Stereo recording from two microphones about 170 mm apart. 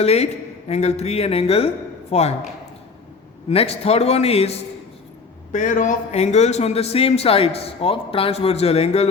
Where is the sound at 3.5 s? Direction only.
35° left (ahead or behind).